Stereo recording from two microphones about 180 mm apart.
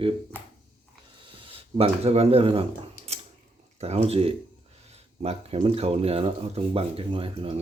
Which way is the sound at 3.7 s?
35° right (ahead or behind).